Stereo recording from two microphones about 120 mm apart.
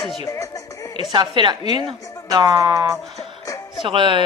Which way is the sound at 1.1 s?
40° right (ahead or behind).